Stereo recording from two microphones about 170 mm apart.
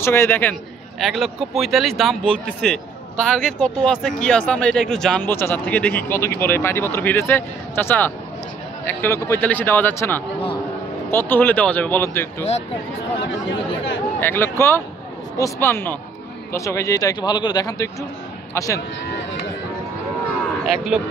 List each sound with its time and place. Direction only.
0.0 s speech: 15° left (ahead or behind)
0.9 s speech: centre (ahead or behind)
14.2 s speech: 15° left (ahead or behind)
20.6 s speech: centre (ahead or behind)